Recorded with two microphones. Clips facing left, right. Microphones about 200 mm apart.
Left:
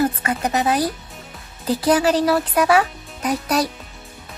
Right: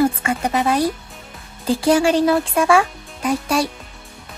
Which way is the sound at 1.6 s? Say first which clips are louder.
Right 2 dB; 25° right (ahead or behind).